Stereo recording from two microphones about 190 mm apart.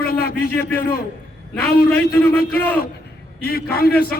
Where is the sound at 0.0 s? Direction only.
55° left (ahead or behind).